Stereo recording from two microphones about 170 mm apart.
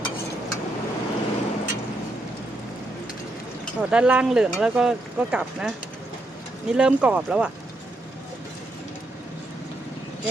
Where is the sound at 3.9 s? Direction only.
5° right (ahead or behind).